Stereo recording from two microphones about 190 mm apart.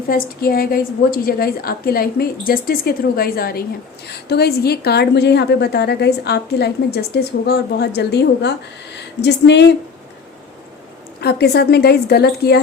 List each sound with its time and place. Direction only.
0.1 s a woman's voice: 50° left (ahead or behind)
11.2 s a woman's voice: 55° left (ahead or behind)